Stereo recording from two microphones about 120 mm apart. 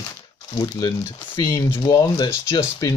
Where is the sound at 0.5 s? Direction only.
30° left (ahead or behind).